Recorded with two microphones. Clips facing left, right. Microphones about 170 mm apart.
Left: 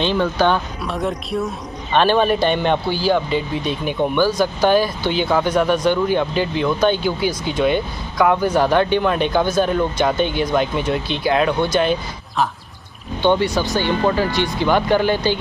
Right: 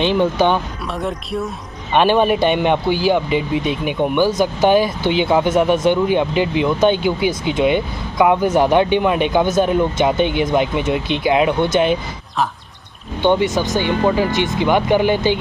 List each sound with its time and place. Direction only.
0.0 s speech: 15° right (ahead or behind)
0.8 s speech: centre (ahead or behind)
2.0 s speech: 15° right (ahead or behind)
13.2 s speech: 15° right (ahead or behind)